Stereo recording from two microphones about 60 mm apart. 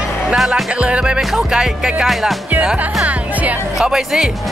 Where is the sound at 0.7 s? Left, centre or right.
Centre.